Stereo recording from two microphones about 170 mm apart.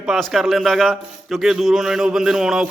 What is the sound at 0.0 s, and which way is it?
A man's voice, centre (ahead or behind).